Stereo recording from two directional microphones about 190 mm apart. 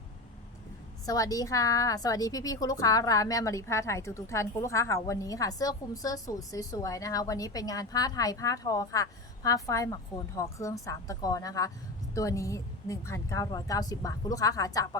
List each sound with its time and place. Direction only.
1.0 s a woman's voice: 20° left (ahead or behind)